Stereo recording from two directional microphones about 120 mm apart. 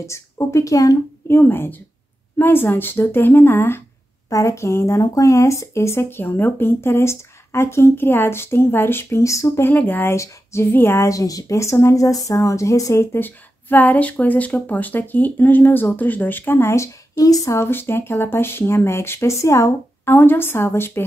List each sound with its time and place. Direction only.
0.0 s speech: 25° left (ahead or behind)